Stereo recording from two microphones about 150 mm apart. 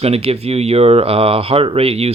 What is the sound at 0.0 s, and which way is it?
Speech, 45° right (ahead or behind).